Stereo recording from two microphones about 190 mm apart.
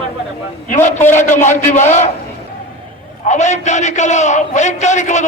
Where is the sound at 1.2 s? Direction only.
40° left (ahead or behind).